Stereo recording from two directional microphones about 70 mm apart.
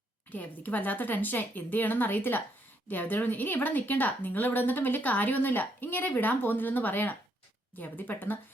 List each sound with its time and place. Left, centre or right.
0.3 s a woman's voice: left